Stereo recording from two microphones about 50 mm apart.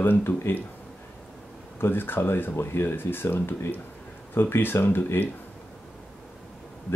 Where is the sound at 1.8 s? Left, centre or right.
Left.